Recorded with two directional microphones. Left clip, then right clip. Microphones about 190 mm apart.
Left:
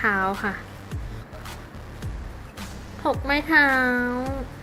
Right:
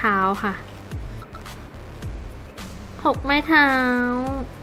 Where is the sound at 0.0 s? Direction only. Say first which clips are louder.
Right 3 dB; 10° right (ahead or behind).